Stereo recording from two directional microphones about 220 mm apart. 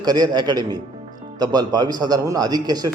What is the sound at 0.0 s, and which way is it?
A man's voice, 20° right (ahead or behind).